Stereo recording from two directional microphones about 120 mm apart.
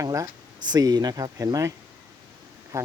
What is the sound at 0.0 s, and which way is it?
Speech, 30° right (ahead or behind).